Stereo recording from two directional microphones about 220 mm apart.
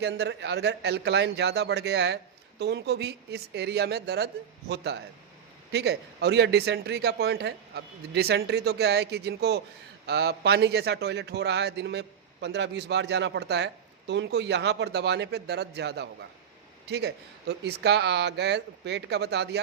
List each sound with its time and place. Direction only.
0.0 s a man's voice: 50° right (ahead or behind)